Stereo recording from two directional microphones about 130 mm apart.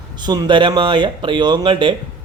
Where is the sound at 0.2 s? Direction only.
35° right (ahead or behind).